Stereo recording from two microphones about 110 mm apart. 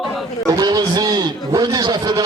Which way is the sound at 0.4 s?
35° right (ahead or behind).